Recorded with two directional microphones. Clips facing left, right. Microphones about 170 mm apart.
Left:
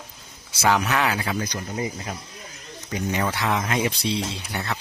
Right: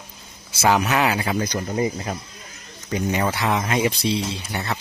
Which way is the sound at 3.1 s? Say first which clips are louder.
Right 2 dB; 10° right (ahead or behind).